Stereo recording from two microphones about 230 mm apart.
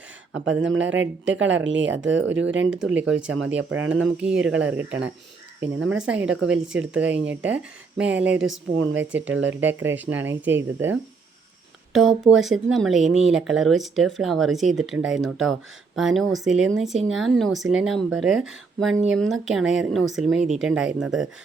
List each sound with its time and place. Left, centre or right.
0.3 s speech: right
3.8 s speech: centre
6.2 s speech: right
6.7 s speech: centre
8.4 s speech: right
9.0 s speech: centre
11.9 s speech: centre